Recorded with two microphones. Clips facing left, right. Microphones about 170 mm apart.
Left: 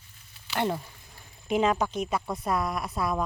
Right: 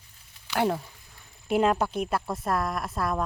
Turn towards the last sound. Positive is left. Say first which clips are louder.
# even
turn(degrees=0)  # may be behind; listen again after turning